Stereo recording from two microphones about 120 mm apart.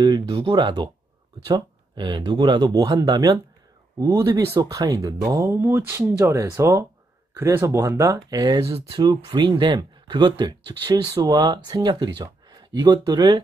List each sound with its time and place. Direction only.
0.0 s speech: 40° right (ahead or behind)